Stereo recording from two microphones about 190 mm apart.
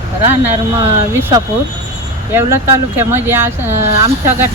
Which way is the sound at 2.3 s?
15° right (ahead or behind).